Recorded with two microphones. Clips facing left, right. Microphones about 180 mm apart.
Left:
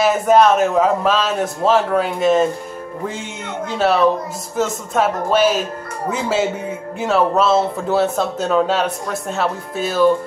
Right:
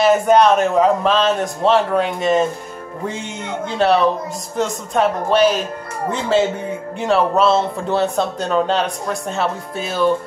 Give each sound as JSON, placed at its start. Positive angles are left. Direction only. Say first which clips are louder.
{"t": 0.0, "sound": "speech", "louder": "even", "side_deg": 0}